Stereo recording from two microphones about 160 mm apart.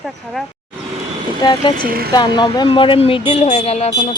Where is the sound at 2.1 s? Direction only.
30° left (ahead or behind).